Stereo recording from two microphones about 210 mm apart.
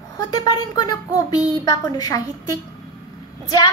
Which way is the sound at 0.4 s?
20° left (ahead or behind).